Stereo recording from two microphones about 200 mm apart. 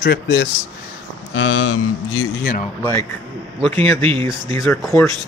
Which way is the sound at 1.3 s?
85° left.